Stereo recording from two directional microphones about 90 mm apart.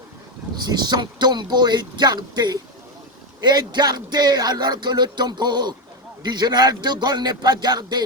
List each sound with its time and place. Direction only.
0.5 s speech: 50° right (ahead or behind)